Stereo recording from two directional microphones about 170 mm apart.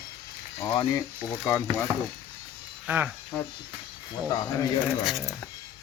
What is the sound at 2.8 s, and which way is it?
Speech, 10° right (ahead or behind).